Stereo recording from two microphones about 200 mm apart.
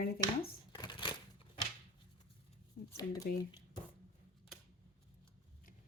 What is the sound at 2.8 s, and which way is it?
Shuffling cards, 45° left (ahead or behind).